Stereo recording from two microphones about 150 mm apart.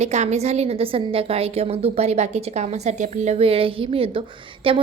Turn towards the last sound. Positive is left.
turn(degrees=-35)  # may be behind; listen again after turning